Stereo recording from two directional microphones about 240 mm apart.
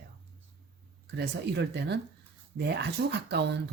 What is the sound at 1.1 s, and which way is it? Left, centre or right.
Speech, right.